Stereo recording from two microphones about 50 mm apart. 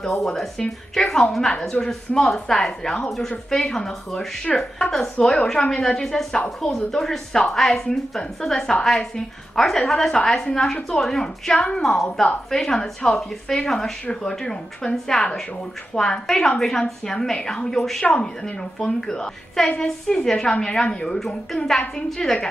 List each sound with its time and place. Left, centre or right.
0.1 s a woman's voice: centre